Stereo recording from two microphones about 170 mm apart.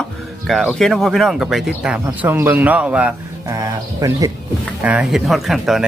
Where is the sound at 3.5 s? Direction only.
20° right (ahead or behind).